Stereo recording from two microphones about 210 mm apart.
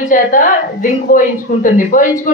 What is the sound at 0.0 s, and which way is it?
A woman's voice, 40° left (ahead or behind).